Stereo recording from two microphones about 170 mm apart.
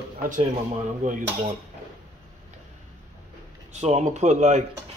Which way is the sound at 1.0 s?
45° right (ahead or behind).